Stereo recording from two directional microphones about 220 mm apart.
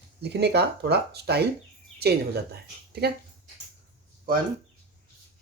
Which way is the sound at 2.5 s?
45° right (ahead or behind).